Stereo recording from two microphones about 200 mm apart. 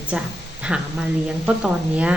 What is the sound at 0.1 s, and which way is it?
A woman's voice, 5° right (ahead or behind).